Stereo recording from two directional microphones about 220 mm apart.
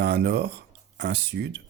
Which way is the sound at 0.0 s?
50° right (ahead or behind).